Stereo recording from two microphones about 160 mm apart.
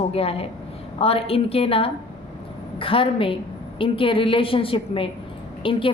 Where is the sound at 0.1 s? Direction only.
35° left (ahead or behind).